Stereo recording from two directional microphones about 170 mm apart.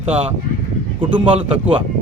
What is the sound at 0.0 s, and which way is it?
Speech, 40° right (ahead or behind).